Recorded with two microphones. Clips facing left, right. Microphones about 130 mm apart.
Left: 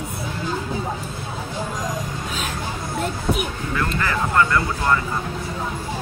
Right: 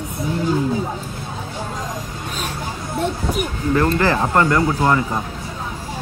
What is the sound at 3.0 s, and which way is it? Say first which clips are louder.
Speech: right 2 dB; centre (ahead or behind).